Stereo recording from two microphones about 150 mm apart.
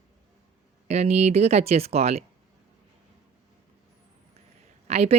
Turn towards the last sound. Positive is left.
turn(degrees=-45)  # may be behind; listen again after turning